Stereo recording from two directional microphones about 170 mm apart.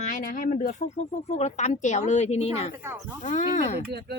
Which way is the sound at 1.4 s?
40° left (ahead or behind).